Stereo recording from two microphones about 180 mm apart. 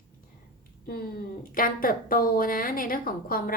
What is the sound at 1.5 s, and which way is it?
A woman's voice, 50° left (ahead or behind).